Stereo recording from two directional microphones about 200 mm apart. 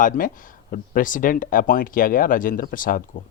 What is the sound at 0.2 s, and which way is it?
Speech, 40° left (ahead or behind).